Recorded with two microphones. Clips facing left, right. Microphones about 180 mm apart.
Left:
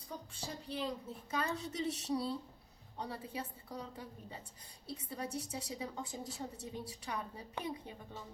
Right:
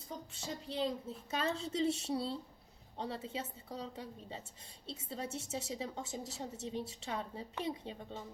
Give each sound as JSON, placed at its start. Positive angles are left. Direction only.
{"t": 0.4, "sound": "a woman's voice", "side_deg": -25}